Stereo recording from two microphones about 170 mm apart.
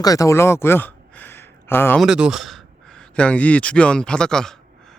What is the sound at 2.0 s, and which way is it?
Speech, 5° right (ahead or behind).